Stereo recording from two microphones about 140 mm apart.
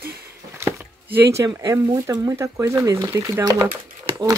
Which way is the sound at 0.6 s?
15° right (ahead or behind).